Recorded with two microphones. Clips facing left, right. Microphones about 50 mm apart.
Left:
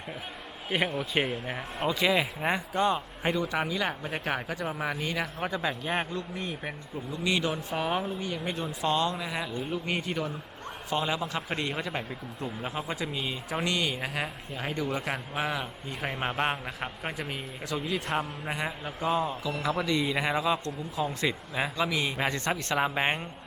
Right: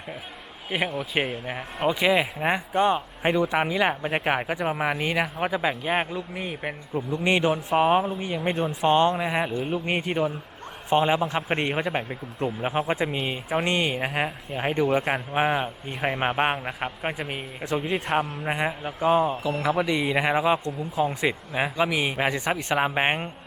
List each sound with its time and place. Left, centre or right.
0.9 s speech: centre
6.7 s speech: right
8.4 s speech: right
19.6 s speech: right